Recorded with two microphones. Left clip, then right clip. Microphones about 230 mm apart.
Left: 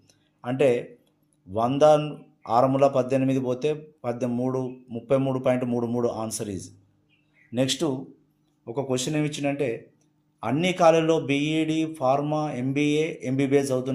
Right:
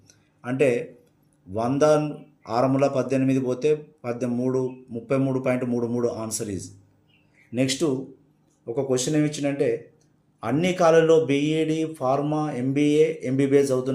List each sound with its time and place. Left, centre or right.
0.4 s a man's voice: left